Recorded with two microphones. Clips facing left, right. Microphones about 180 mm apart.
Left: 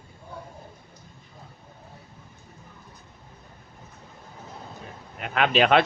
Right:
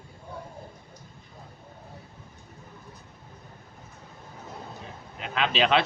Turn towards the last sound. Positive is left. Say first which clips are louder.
# left 4 dB
turn(degrees=50)  # may be behind; listen again after turning